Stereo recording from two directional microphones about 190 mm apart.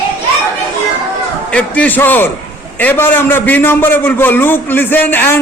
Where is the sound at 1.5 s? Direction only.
10° left (ahead or behind).